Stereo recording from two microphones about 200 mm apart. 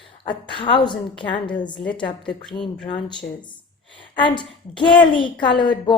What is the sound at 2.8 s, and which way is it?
A woman's voice, 25° left (ahead or behind).